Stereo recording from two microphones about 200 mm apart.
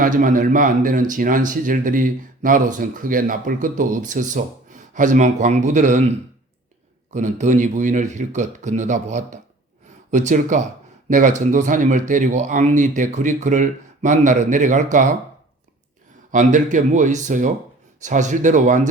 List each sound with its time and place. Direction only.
0.0 s speech: 45° right (ahead or behind)
16.3 s speech: 40° right (ahead or behind)